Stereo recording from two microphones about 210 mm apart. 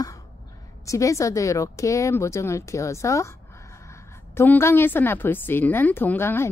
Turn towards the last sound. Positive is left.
turn(degrees=10)  # may be behind; listen again after turning